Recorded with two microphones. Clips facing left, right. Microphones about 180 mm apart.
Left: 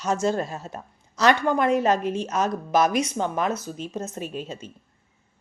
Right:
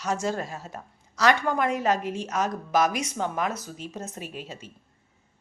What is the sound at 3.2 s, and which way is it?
Speech, 25° left (ahead or behind).